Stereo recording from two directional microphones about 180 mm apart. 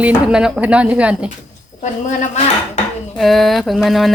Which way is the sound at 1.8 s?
40° left (ahead or behind).